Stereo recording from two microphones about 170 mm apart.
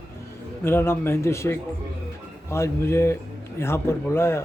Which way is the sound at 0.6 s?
15° left (ahead or behind).